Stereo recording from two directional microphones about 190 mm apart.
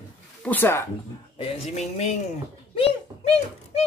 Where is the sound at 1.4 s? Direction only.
35° left (ahead or behind).